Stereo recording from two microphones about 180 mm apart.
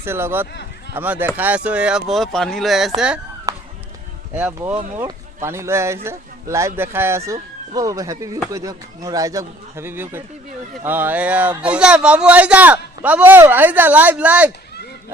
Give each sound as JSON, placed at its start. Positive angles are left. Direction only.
{"t": 0.0, "sound": "a man's voice", "side_deg": -15}
{"t": 3.5, "sound": "run", "side_deg": -20}
{"t": 4.4, "sound": "a man's voice", "side_deg": -5}